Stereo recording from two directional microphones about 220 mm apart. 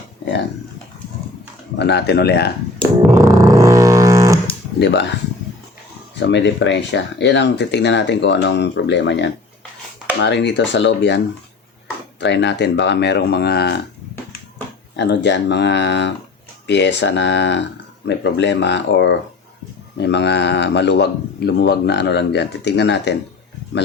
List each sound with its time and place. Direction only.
1.8 s speech: 50° left (ahead or behind)
3.2 s a sound: 15° right (ahead or behind)
4.8 s speech: 50° left (ahead or behind)
6.1 s speech: 50° left (ahead or behind)
12.2 s speech: 55° left (ahead or behind)
14.9 s speech: 50° left (ahead or behind)